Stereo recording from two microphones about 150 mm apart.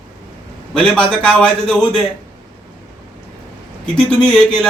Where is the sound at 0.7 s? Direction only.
5° left (ahead or behind).